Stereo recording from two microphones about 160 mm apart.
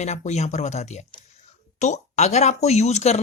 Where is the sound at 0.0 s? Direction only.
45° left (ahead or behind).